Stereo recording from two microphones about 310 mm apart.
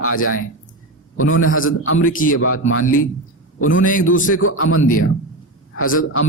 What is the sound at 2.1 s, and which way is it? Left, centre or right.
Speech, left.